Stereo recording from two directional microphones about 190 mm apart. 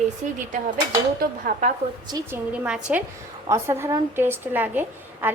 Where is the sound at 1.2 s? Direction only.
45° right (ahead or behind).